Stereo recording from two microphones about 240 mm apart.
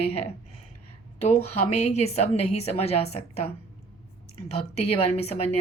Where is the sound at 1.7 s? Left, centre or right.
Left.